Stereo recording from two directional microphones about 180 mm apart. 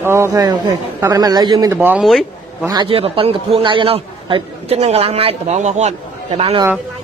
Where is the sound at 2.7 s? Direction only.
30° right (ahead or behind).